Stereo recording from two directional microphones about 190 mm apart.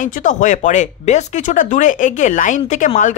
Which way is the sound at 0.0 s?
40° left (ahead or behind).